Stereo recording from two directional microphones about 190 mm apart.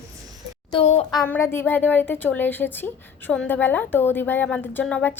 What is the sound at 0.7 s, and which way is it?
Speech, 30° left (ahead or behind).